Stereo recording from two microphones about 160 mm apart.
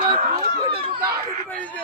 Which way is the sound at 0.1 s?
35° right (ahead or behind).